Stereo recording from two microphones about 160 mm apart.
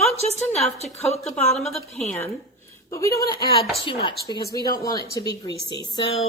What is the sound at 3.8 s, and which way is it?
Speech, 35° left (ahead or behind).